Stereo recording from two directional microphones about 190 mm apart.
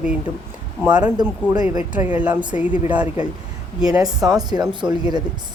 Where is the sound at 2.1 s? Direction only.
5° right (ahead or behind).